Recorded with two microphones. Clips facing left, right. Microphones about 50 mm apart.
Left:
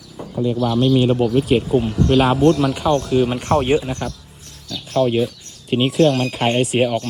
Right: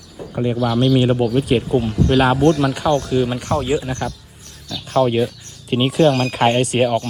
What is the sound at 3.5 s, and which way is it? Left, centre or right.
Speech, left.